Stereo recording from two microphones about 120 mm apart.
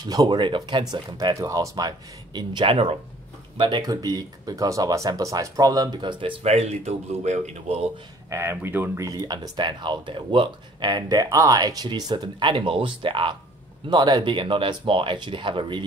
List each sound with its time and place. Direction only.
0.0 s speech: 35° right (ahead or behind); by 3.0 s 50° right (ahead or behind)
3.5 s speech: 40° right (ahead or behind)
6.4 s speech: 65° right (ahead or behind)
8.3 s speech: 20° right (ahead or behind); by 15.8 s 45° right (ahead or behind)